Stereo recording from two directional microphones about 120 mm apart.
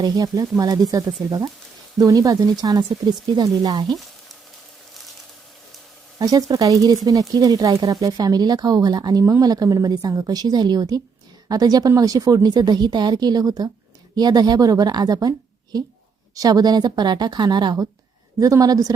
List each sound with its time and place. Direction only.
0.0 s speech: 30° right (ahead or behind)
3.8 s frying: centre (ahead or behind)
6.1 s speech: 30° right (ahead or behind)